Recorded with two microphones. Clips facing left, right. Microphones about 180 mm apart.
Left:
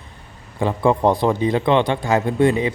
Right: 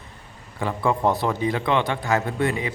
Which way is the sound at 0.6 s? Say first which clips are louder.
Left 5 dB; 25° left (ahead or behind).